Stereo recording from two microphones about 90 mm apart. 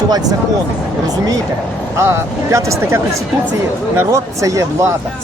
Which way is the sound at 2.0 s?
30° right (ahead or behind).